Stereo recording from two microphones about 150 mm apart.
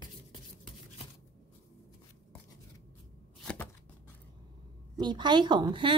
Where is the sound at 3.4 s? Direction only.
10° left (ahead or behind).